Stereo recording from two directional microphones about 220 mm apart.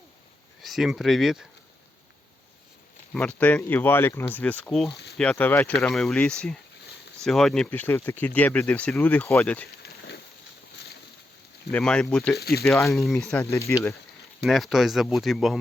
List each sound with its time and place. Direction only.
0.6 s speech: centre (ahead or behind)
3.1 s speech: 5° left (ahead or behind)
4.9 s a sound: 50° left (ahead or behind)
5.1 s speech: 5° left (ahead or behind)
9.6 s a sound: 45° left (ahead or behind)
11.7 s speech: 5° left (ahead or behind)
12.4 s speech: 45° left (ahead or behind)
12.9 s speech: centre (ahead or behind)
13.3 s speech: 15° left (ahead or behind)
14.4 s speech: centre (ahead or behind)